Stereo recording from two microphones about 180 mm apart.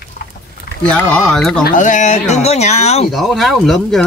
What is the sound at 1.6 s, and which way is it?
Speech, 45° left (ahead or behind).